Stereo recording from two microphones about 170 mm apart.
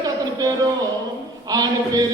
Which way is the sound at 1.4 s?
20° right (ahead or behind).